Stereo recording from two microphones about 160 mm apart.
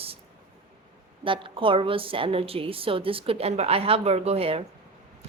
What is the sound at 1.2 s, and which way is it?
A woman's voice, 30° right (ahead or behind).